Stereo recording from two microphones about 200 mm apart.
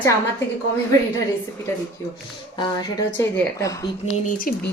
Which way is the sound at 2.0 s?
15° left (ahead or behind).